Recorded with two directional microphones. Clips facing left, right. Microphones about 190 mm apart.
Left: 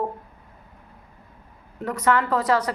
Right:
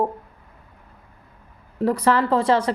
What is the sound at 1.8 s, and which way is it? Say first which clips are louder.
Speech: right 3 dB; 35° right (ahead or behind).